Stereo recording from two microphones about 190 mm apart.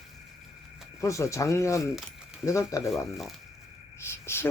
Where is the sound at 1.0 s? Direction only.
15° left (ahead or behind).